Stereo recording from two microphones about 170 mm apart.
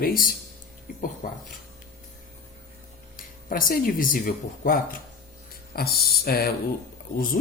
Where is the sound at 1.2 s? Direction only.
55° left (ahead or behind).